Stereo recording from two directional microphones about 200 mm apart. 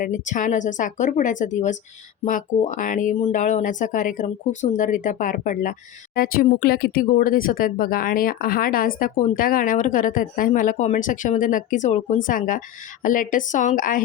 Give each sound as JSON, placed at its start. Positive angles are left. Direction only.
{"t": 0.0, "sound": "speech", "side_deg": 40}